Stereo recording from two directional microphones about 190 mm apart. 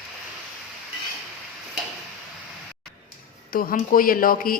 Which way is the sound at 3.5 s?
45° left (ahead or behind).